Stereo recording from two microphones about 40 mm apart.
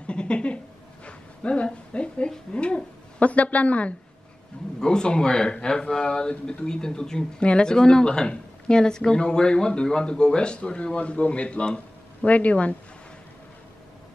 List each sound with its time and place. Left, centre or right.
0.0 s a sound: left
2.5 s speech: left
4.7 s speech: centre; by 12.7 s left